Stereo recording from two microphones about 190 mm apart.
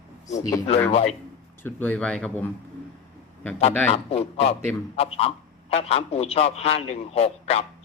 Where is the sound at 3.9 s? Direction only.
30° left (ahead or behind).